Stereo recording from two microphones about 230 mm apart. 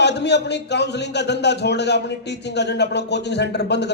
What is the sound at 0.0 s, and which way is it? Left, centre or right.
A man's voice, left.